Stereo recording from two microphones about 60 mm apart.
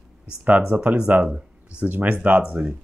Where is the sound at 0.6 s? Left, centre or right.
Centre.